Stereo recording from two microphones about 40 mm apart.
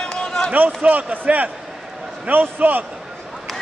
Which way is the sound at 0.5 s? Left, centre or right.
Right.